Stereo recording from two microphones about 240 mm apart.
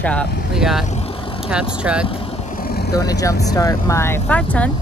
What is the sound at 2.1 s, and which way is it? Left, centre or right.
Vehicle, left.